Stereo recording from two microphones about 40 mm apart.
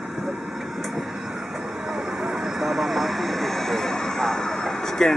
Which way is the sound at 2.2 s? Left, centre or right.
Centre.